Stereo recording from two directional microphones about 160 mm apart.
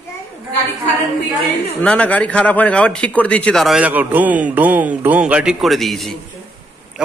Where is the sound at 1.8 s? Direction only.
10° left (ahead or behind).